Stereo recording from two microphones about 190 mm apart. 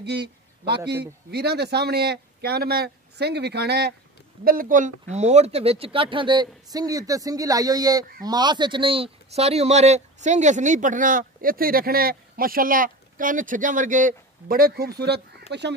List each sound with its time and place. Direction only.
0.0 s speech: 65° right (ahead or behind)
4.5 s speech: 45° right (ahead or behind); by 15.6 s 60° right (ahead or behind)